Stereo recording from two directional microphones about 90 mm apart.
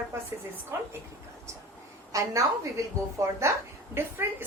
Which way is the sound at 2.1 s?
35° right (ahead or behind).